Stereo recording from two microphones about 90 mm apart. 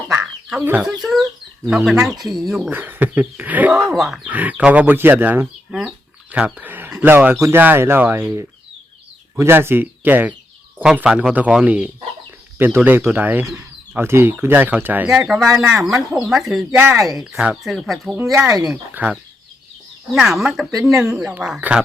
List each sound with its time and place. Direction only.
0.1 s chicken: 10° right (ahead or behind)
1.7 s speech: 5° right (ahead or behind)
2.6 s speech: 20° right (ahead or behind)
3.8 s speech: 5° right (ahead or behind)
4.3 s speech: 15° right (ahead or behind)
6.3 s a sound: 15° right (ahead or behind)
7.0 s speech: 20° right (ahead or behind)
7.3 s speech: 35° right (ahead or behind)
7.6 s speech: 25° right (ahead or behind)
15.0 s speech: 5° right (ahead or behind)
19.0 s speech: 15° right (ahead or behind)
20.1 s speech: 5° right (ahead or behind)